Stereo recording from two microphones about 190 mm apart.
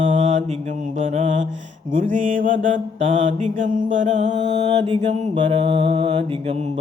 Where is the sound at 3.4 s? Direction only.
45° right (ahead or behind).